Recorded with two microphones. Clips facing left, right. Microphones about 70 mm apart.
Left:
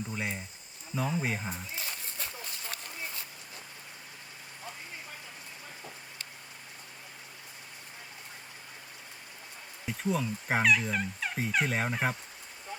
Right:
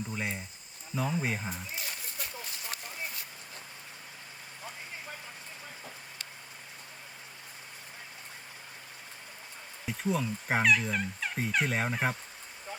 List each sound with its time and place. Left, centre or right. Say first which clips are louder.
0.1 s fowl: even; centre
1.8 s a sound: even; left
9.8 s fowl: even; centre